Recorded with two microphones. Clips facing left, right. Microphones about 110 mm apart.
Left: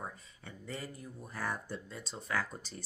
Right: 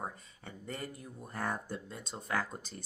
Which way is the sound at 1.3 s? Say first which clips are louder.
Right 2 dB; 50° right (ahead or behind).